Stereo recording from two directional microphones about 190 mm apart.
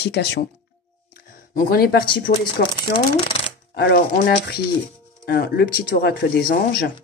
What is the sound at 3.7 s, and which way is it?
Speech, 55° left (ahead or behind).